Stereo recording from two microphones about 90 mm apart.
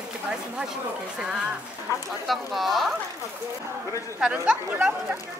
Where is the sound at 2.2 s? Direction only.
Centre (ahead or behind).